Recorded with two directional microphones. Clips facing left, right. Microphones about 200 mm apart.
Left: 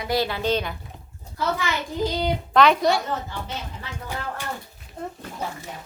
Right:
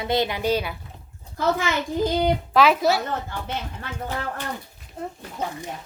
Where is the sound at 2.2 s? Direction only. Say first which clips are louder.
Left 1 dB; 5° right (ahead or behind).